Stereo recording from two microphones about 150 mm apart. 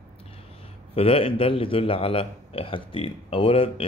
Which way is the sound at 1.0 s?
40° left (ahead or behind).